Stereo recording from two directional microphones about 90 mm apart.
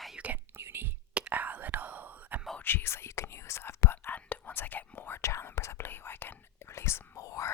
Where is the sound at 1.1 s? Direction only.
15° right (ahead or behind).